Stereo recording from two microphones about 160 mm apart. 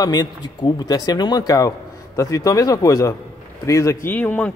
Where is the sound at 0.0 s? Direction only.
25° left (ahead or behind).